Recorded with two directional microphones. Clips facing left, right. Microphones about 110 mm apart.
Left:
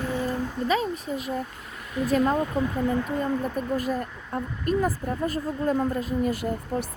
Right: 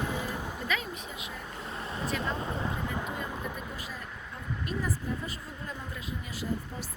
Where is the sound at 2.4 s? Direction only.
25° right (ahead or behind).